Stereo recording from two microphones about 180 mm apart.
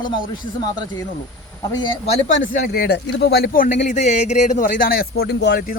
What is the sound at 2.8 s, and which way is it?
A man's voice, 70° left (ahead or behind).